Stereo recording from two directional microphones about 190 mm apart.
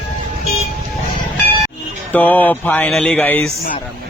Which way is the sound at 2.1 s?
10° left (ahead or behind).